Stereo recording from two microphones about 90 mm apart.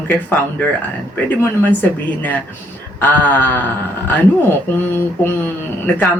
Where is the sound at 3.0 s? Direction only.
20° left (ahead or behind).